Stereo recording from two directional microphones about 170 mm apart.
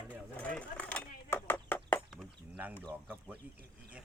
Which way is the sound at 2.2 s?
10° right (ahead or behind).